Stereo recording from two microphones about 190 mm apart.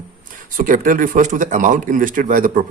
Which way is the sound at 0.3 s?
45° right (ahead or behind).